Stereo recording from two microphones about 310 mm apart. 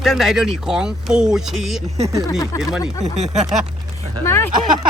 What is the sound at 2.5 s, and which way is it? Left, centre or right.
Speech, centre.